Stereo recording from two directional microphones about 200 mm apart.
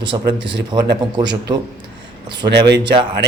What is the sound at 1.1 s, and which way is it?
Speech, 20° right (ahead or behind).